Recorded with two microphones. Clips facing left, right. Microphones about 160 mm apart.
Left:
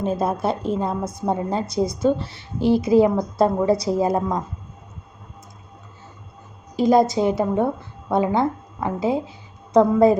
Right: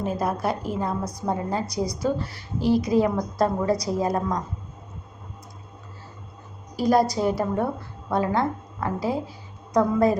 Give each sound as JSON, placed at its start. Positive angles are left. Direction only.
{"t": 0.0, "sound": "a woman's voice", "side_deg": 25}
{"t": 6.7, "sound": "a woman's voice", "side_deg": 20}